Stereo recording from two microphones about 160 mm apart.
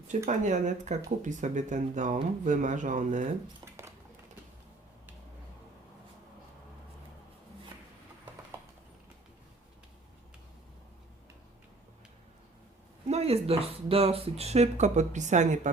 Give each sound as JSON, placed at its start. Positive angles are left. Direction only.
{"t": 0.3, "sound": "speech", "side_deg": -50}
{"t": 13.1, "sound": "speech", "side_deg": -40}